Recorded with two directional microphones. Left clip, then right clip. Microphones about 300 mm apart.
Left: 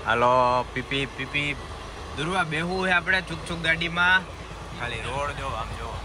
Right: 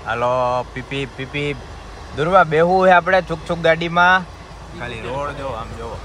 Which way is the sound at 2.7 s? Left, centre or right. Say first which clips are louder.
Right 9 dB; right.